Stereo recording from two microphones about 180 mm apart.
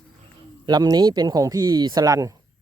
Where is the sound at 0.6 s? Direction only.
25° right (ahead or behind).